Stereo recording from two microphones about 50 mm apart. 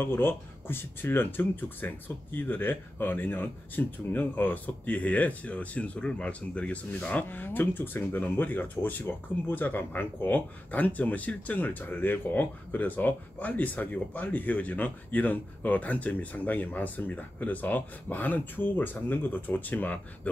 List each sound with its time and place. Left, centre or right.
0.0 s speech: left